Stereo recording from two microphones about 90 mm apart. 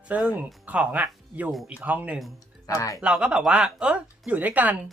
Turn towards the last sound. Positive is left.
turn(degrees=-20)  # may be behind; listen again after turning